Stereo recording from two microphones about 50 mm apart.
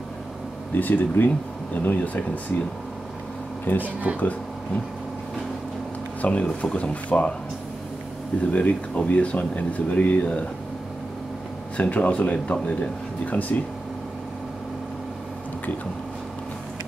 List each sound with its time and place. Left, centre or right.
0.7 s speech: left
3.6 s speech: left
6.2 s speech: left
8.5 s speech: left
11.7 s speech: left